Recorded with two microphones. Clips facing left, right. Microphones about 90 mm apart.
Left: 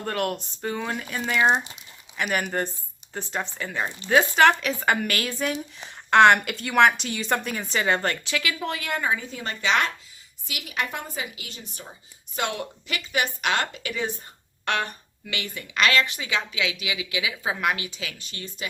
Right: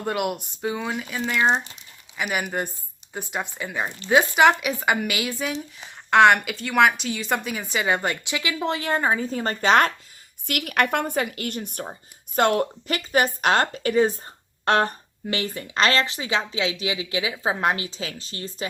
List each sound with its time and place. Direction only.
0.0 s speech: 10° right (ahead or behind); by 1.6 s 5° left (ahead or behind)
2.1 s a woman's voice: 5° right (ahead or behind); by 9.9 s 45° right (ahead or behind)
10.4 s speech: 60° right (ahead or behind); by 18.5 s 35° right (ahead or behind)